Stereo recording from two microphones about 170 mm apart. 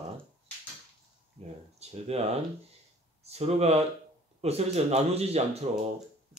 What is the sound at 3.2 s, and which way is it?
Speech, 40° right (ahead or behind).